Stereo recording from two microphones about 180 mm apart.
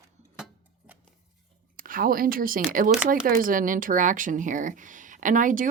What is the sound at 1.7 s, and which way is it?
Speech, 50° right (ahead or behind).